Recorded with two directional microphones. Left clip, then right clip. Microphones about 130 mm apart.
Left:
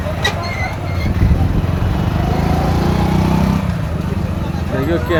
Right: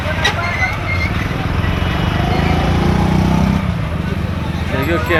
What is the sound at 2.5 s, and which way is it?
Vehicle, 45° right (ahead or behind).